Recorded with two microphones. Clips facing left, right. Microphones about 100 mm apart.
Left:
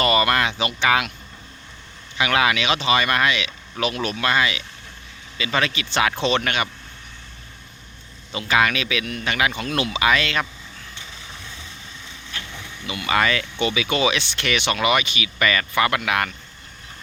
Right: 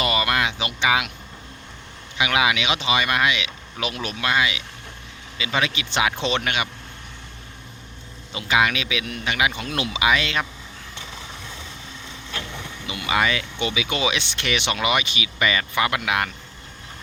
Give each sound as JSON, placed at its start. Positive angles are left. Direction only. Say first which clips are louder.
{"t": 0.0, "sound": "speech", "louder": "left 3 dB", "side_deg": -10}
{"t": 2.1, "sound": "speech", "louder": "left 1 dB", "side_deg": -15}
{"t": 8.3, "sound": "speech", "louder": "left 1 dB", "side_deg": -15}
{"t": 12.5, "sound": "speech", "louder": "left 1 dB", "side_deg": -25}